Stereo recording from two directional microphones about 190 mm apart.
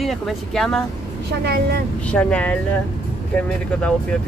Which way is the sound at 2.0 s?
5° left (ahead or behind).